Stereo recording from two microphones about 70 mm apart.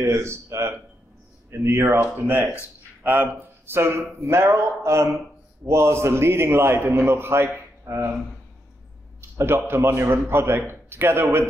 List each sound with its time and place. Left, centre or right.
0.0 s a man's voice: right
9.4 s a man's voice: right